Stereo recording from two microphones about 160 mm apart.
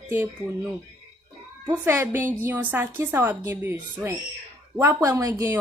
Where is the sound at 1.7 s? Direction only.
15° right (ahead or behind).